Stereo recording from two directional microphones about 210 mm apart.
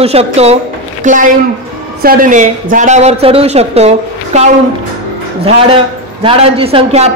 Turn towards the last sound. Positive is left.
turn(degrees=-25)  # may be behind; listen again after turning